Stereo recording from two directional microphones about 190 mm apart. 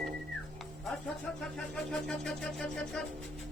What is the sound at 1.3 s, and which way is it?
Music, 5° left (ahead or behind).